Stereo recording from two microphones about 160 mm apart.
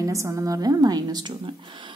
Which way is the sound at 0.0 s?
20° right (ahead or behind).